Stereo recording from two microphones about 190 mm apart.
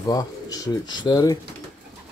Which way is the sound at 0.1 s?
20° left (ahead or behind).